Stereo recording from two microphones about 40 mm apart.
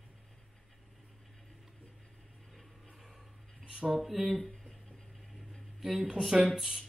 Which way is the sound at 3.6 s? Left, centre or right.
Right.